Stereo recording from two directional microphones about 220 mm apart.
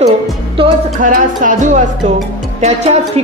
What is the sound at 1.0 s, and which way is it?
A woman's voice, 35° right (ahead or behind).